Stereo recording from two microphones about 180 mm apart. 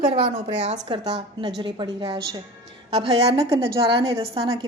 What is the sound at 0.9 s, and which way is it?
A woman's voice, 25° right (ahead or behind).